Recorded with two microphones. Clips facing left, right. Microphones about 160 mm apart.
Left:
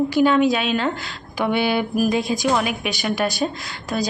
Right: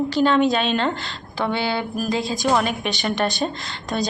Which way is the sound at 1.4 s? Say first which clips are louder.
Left 3 dB; 15° left (ahead or behind).